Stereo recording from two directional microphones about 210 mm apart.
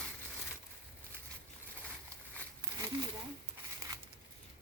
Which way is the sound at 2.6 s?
15° right (ahead or behind).